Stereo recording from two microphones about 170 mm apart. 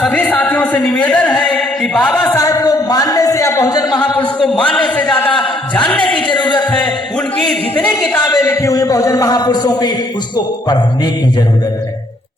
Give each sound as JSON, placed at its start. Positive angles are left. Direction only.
{"t": 0.0, "sound": "music", "side_deg": 10}
{"t": 2.3, "sound": "a sound", "side_deg": 20}
{"t": 4.4, "sound": "a man's voice", "side_deg": 5}
{"t": 5.7, "sound": "a sound", "side_deg": 5}
{"t": 6.3, "sound": "music", "side_deg": 25}
{"t": 8.2, "sound": "a man's voice", "side_deg": 20}